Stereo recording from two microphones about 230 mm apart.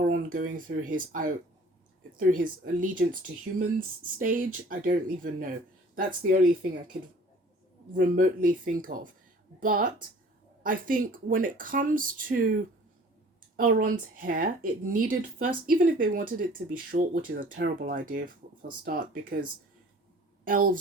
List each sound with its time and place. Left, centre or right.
0.0 s speech: right
7.9 s speech: right
13.6 s a woman's voice: right